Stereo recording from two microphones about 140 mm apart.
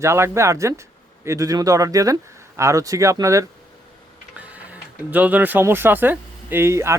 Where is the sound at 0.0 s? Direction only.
20° right (ahead or behind).